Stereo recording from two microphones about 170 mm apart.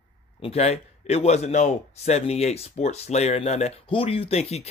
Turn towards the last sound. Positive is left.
turn(degrees=35)  # may be behind; listen again after turning